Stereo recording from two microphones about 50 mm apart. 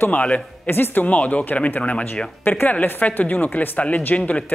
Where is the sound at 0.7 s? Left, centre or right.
Left.